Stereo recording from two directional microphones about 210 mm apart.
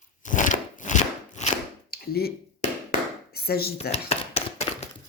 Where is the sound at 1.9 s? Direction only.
45° left (ahead or behind).